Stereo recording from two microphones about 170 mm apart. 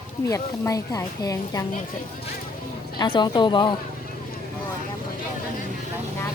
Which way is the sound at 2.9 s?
25° left (ahead or behind).